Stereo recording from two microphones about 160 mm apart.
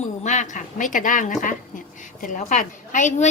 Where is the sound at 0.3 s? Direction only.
50° left (ahead or behind).